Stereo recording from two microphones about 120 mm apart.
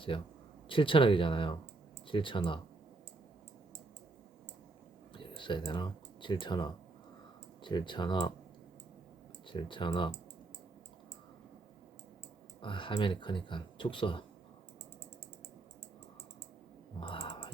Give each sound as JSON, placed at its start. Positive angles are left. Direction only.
{"t": 0.1, "sound": "speech", "side_deg": 45}
{"t": 5.1, "sound": "speech", "side_deg": 45}
{"t": 9.5, "sound": "speech", "side_deg": 40}
{"t": 12.6, "sound": "speech", "side_deg": 45}
{"t": 17.0, "sound": "clicking", "side_deg": 50}